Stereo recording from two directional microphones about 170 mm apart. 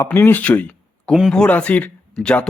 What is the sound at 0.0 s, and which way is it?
A man's voice, 15° left (ahead or behind).